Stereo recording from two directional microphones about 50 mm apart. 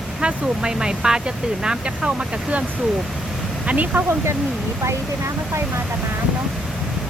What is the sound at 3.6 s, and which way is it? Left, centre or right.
Speech, right.